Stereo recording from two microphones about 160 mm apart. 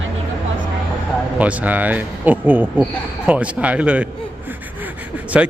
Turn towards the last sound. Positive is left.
turn(degrees=-5)  # may be behind; listen again after turning